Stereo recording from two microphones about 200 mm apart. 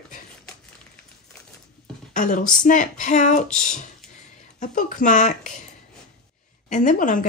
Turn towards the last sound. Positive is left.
turn(degrees=40)  # may be behind; listen again after turning